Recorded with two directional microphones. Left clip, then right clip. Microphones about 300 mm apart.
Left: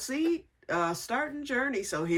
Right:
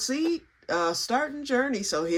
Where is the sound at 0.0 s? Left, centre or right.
Centre.